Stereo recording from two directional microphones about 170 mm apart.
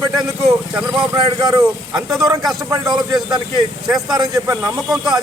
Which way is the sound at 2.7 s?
20° right (ahead or behind).